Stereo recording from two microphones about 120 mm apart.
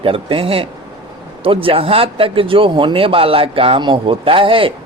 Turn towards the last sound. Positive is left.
turn(degrees=-50)  # may be behind; listen again after turning